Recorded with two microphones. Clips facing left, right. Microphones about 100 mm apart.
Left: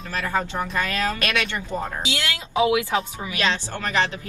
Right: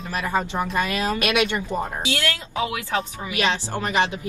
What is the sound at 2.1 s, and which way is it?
Speech, 15° left (ahead or behind).